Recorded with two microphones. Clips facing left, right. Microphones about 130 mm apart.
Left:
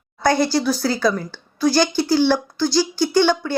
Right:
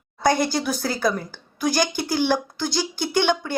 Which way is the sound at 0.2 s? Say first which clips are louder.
Left 3 dB; 15° right (ahead or behind).